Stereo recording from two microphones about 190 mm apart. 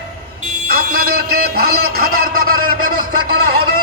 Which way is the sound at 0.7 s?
50° right (ahead or behind).